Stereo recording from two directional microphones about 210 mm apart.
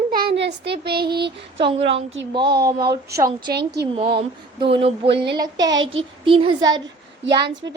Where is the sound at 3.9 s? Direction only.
25° right (ahead or behind).